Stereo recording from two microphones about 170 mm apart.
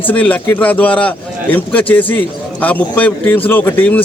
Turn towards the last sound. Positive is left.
turn(degrees=10)  # may be behind; listen again after turning